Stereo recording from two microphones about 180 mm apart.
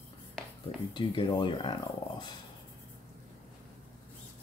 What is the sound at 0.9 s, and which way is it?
Speech, 25° left (ahead or behind).